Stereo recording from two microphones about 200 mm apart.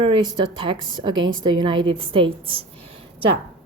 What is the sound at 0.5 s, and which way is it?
A woman's voice, 25° right (ahead or behind).